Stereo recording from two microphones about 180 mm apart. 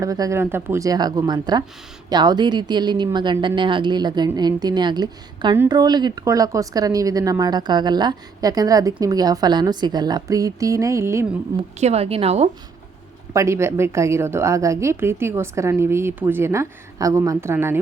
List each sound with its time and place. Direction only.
0.0 s speech: 20° right (ahead or behind)
11.8 s a woman's voice: 35° right (ahead or behind)
13.3 s a woman's voice: 15° right (ahead or behind)